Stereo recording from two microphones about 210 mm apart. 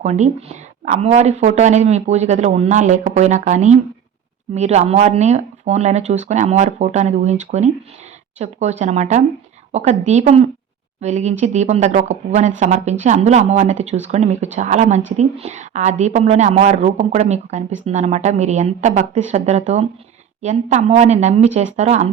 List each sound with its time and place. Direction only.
0.0 s speech: 30° right (ahead or behind)